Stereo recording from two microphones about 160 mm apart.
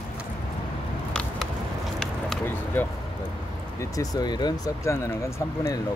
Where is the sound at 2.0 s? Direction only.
5° left (ahead or behind).